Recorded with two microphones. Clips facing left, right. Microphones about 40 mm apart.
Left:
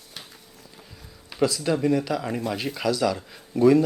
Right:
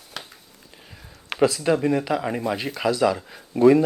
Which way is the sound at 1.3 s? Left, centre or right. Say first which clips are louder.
Right 4 dB; right.